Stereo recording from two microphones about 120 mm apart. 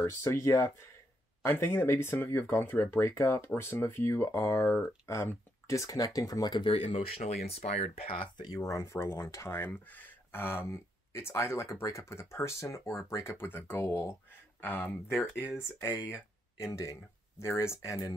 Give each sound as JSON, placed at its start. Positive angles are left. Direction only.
{"t": 0.0, "sound": "speech", "side_deg": 25}
{"t": 7.5, "sound": "speech", "side_deg": 65}
{"t": 8.4, "sound": "speech", "side_deg": 30}